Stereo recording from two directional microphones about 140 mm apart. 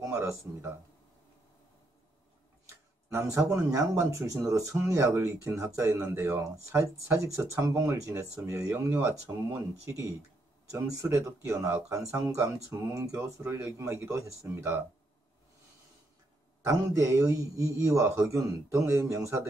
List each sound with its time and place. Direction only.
0.0 s a sound: 20° right (ahead or behind)
3.1 s speech: 20° right (ahead or behind)
16.6 s speech: 25° right (ahead or behind)